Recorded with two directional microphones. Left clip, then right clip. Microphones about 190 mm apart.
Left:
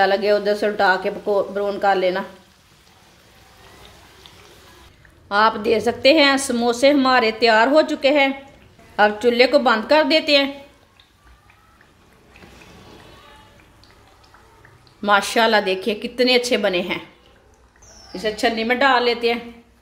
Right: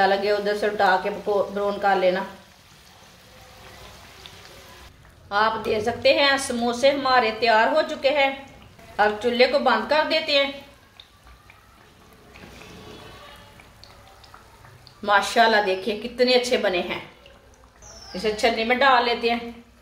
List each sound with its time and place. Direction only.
0.0 s speech: 55° left (ahead or behind)
5.3 s a woman's voice: 55° left (ahead or behind)
15.0 s speech: 45° left (ahead or behind)
18.1 s speech: 50° left (ahead or behind)